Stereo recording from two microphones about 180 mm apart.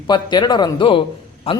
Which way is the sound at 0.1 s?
25° left (ahead or behind).